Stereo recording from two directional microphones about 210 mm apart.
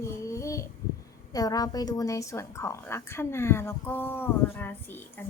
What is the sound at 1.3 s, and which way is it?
A woman's voice, 15° left (ahead or behind).